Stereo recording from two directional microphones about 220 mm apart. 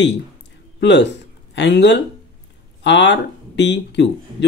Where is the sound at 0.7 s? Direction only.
50° left (ahead or behind).